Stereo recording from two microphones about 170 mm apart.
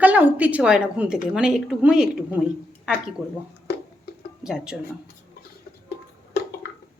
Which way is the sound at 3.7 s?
65° left (ahead or behind).